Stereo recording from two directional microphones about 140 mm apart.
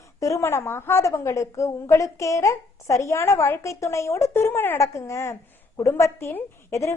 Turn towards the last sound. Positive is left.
turn(degrees=20)  # may be behind; listen again after turning